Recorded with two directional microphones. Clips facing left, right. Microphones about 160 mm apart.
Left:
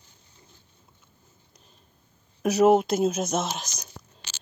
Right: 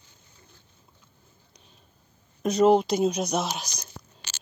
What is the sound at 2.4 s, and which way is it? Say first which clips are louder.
Speech: left 1 dB; 5° left (ahead or behind).